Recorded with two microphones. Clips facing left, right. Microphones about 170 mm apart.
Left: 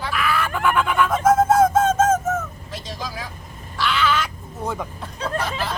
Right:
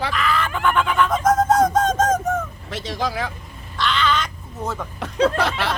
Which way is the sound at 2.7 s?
75° right (ahead or behind).